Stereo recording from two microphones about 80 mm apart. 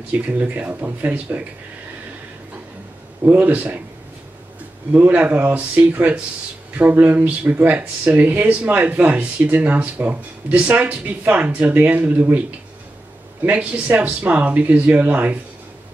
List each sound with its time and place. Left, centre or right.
0.1 s speech: centre
3.3 s speech: centre
4.9 s speech: centre